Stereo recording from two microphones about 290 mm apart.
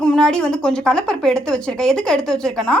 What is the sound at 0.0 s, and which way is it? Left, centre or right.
A woman's voice, centre.